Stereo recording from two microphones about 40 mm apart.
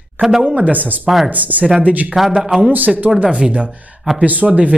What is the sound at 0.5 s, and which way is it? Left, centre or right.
Speech, right.